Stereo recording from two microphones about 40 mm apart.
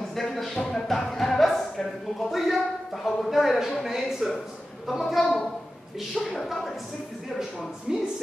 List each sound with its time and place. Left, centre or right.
0.6 s music: centre
1.8 s speech: centre
2.3 s speech: centre
7.9 s speech: centre